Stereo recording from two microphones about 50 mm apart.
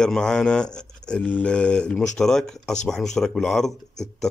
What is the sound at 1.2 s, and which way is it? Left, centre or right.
Speech, left.